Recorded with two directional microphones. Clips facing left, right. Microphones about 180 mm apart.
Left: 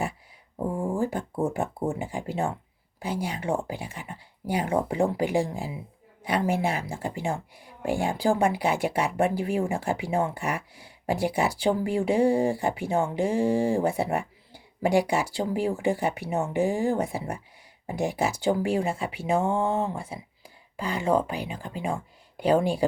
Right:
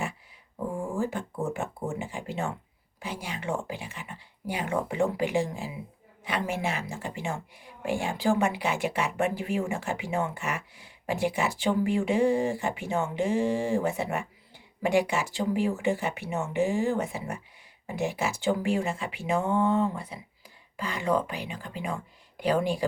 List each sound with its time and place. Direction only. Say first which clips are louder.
0.8 s speech: left 3 dB; 35° left (ahead or behind)